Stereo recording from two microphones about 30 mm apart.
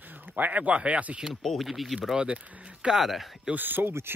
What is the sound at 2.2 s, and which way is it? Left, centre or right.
Speech, right.